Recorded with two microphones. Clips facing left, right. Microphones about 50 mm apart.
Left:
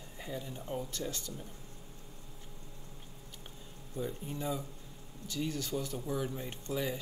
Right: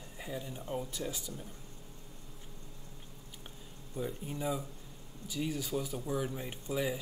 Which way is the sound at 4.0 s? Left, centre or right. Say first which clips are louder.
Even; centre.